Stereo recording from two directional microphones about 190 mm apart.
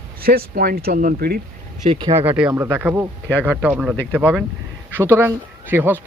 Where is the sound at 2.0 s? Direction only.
25° right (ahead or behind).